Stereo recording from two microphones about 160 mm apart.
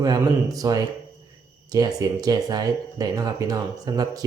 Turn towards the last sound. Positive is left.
turn(degrees=-25)  # may be behind; listen again after turning